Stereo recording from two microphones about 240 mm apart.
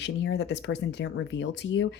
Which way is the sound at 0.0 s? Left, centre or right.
Left.